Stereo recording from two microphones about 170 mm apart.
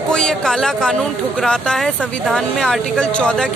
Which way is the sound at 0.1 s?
5° left (ahead or behind).